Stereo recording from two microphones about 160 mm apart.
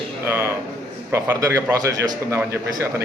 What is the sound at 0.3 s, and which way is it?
A man's voice, 15° right (ahead or behind).